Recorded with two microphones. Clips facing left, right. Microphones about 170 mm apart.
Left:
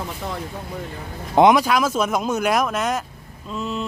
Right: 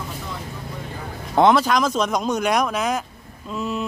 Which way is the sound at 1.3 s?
15° left (ahead or behind).